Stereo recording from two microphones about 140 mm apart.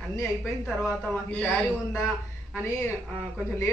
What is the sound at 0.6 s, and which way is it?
A woman's voice, centre (ahead or behind).